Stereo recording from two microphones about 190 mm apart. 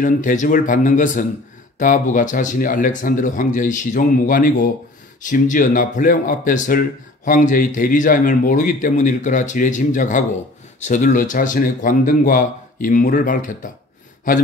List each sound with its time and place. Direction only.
0.0 s speech: 45° left (ahead or behind)